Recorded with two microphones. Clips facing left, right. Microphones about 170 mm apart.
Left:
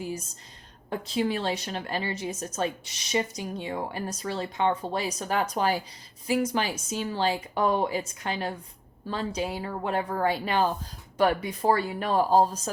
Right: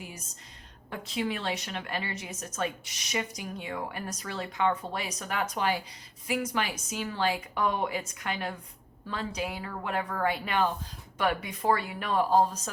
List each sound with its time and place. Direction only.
0.9 s a woman's voice: 35° left (ahead or behind)